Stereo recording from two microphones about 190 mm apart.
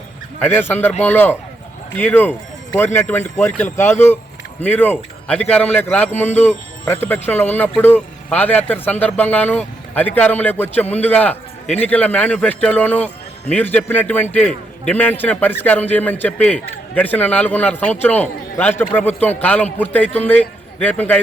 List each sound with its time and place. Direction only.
0.7 s a man's voice: 10° left (ahead or behind)